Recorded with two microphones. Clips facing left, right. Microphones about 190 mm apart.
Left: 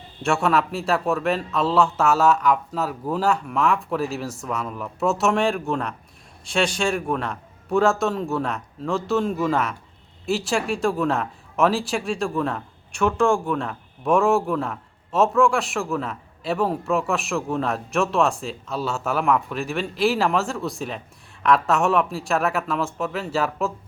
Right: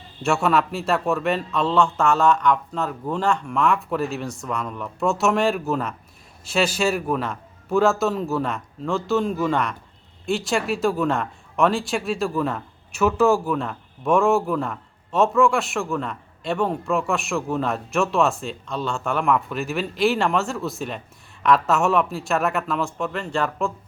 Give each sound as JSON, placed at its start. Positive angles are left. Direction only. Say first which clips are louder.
{"t": 0.2, "sound": "speech", "louder": "right 1 dB", "side_deg": 0}